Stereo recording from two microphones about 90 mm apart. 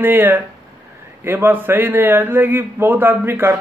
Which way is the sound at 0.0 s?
25° right (ahead or behind).